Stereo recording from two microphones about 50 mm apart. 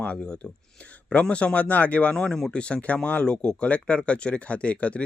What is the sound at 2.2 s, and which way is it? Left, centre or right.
Speech, centre.